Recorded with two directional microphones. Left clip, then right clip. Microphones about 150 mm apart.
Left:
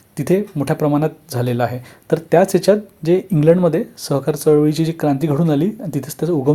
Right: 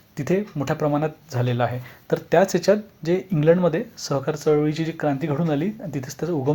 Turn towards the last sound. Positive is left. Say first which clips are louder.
# left 7 dB
turn(degrees=30)  # may be behind; listen again after turning